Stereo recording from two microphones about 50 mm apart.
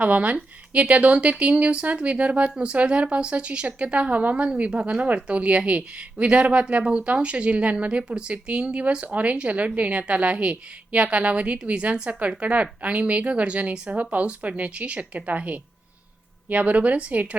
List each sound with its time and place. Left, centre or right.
0.0 s speech: right